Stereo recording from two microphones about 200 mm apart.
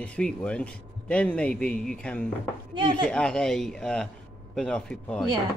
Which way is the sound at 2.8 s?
25° right (ahead or behind).